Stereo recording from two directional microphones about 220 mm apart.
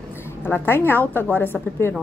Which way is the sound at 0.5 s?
10° left (ahead or behind).